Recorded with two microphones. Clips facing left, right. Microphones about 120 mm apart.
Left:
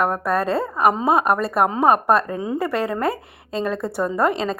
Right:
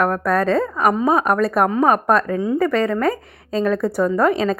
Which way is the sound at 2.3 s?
15° left (ahead or behind).